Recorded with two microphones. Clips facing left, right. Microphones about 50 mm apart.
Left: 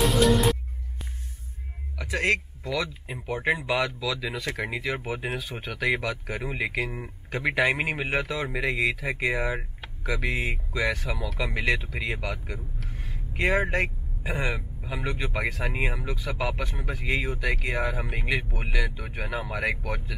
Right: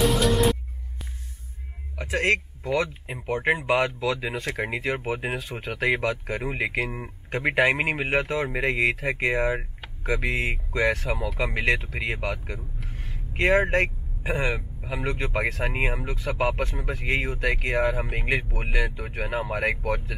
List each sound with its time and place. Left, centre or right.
0.0 s music: centre
2.0 s speech: right